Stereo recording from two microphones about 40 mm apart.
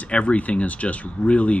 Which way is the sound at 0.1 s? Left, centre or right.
Left.